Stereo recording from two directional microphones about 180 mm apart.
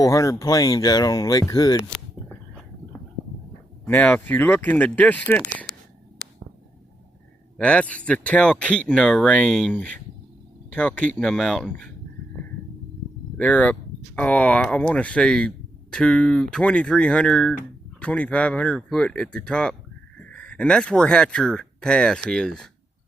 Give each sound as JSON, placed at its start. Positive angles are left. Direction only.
{"t": 0.0, "sound": "speech", "side_deg": 20}
{"t": 3.8, "sound": "speech", "side_deg": 10}
{"t": 7.5, "sound": "speech", "side_deg": 5}
{"t": 13.3, "sound": "speech", "side_deg": 5}